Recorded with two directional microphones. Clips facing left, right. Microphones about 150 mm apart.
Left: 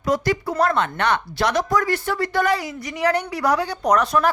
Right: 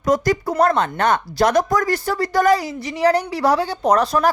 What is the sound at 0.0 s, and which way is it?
Speech, 45° right (ahead or behind).